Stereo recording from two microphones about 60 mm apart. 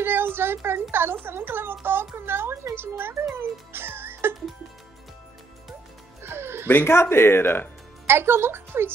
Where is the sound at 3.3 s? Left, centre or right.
Right.